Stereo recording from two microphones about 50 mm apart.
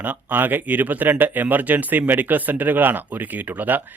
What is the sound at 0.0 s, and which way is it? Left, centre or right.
A man's voice, right.